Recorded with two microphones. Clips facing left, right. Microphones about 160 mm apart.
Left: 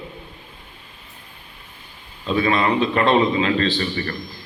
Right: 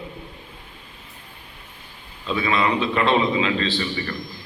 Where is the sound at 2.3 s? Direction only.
45° left (ahead or behind).